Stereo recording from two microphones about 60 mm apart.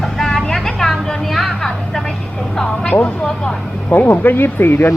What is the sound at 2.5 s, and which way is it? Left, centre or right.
Speech, centre.